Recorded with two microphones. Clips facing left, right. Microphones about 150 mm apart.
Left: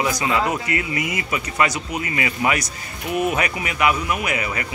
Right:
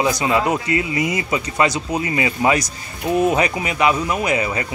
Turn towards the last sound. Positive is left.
turn(degrees=-25)  # may be behind; listen again after turning